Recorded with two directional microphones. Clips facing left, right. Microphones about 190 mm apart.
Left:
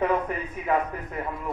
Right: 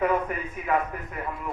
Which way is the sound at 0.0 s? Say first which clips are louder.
Even; 30° left (ahead or behind).